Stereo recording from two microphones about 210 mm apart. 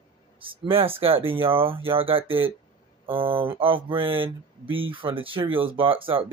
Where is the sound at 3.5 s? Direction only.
25° right (ahead or behind).